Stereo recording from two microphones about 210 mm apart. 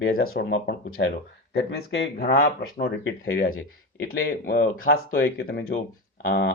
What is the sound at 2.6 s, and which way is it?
Speech, 50° left (ahead or behind).